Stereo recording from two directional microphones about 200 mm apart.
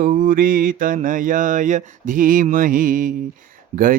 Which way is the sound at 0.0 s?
40° right (ahead or behind).